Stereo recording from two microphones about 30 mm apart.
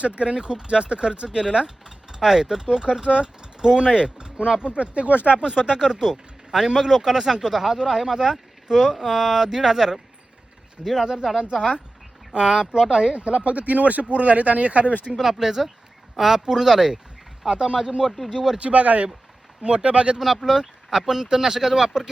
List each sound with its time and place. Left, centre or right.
0.0 s speech: right
0.3 s speech: right
2.1 s speech: centre; by 5.2 s right
5.4 s speech: right
8.3 s a sound: right
8.8 s speech: centre
13.1 s speech: right
15.1 s speech: centre
17.7 s speech: right
18.6 s speech: right
19.6 s speech: right
20.1 s speech: centre
20.9 s speech: centre